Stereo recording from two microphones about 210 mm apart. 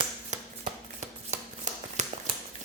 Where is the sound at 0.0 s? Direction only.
30° right (ahead or behind).